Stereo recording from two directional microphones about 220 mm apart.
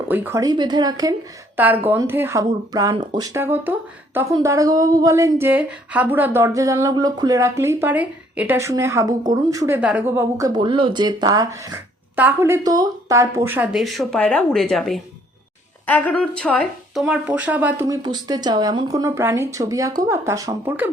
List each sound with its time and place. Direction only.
0.1 s speech: 10° right (ahead or behind)